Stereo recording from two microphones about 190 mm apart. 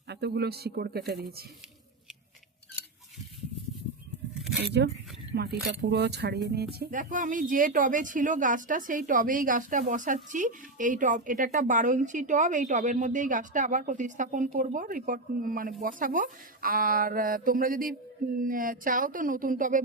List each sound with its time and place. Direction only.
0.1 s speech: 60° right (ahead or behind)
4.4 s a sound: 5° right (ahead or behind)
4.6 s speech: 60° right (ahead or behind); by 19.8 s 45° right (ahead or behind)